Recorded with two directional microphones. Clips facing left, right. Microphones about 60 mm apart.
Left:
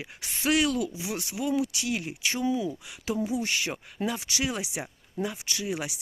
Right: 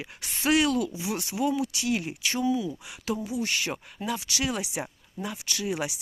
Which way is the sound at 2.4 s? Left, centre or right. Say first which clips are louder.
Right 1 dB; left.